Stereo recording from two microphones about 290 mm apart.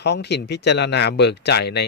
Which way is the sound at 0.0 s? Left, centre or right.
Left.